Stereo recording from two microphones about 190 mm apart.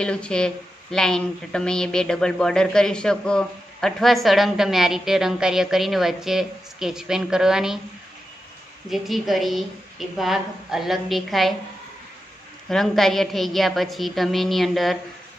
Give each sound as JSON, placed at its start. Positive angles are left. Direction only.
{"t": 0.0, "sound": "a woman's voice", "side_deg": 5}
{"t": 8.9, "sound": "a woman's voice", "side_deg": 0}
{"t": 12.6, "sound": "a woman's voice", "side_deg": 0}